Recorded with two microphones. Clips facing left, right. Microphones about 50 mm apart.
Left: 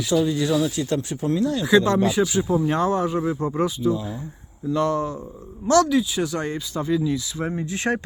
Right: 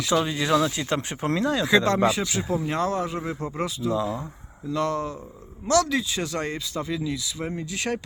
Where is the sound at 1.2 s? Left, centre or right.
Right.